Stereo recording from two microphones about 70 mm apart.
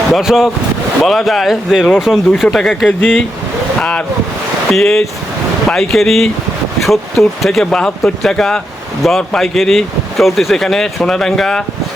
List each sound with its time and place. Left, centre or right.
0.1 s speech: centre
3.8 s speech: centre
7.6 s speech: centre